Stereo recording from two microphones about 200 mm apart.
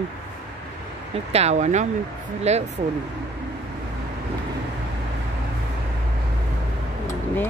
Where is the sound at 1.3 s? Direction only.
35° right (ahead or behind).